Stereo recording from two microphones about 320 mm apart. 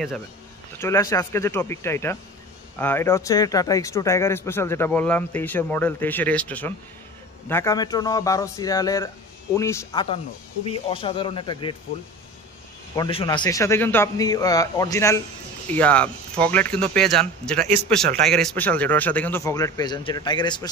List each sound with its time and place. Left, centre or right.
0.7 s speech: centre
12.9 s speech: centre